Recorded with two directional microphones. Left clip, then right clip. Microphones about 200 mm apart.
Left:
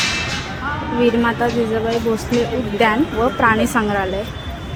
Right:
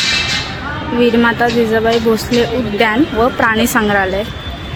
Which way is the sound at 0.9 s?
Centre (ahead or behind).